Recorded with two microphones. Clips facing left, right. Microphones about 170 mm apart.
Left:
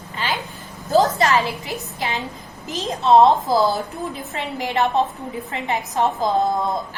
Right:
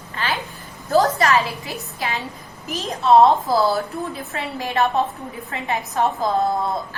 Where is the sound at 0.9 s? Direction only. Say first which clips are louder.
Even; 20° left (ahead or behind).